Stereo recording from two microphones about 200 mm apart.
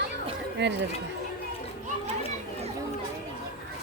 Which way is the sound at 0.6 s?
60° right (ahead or behind).